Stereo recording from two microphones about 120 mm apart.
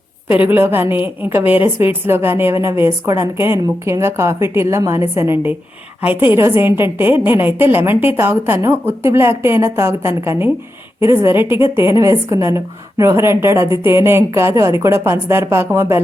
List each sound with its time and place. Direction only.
0.3 s a woman's voice: 15° right (ahead or behind)